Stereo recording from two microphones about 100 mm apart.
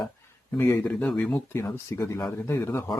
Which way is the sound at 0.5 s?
25° left (ahead or behind).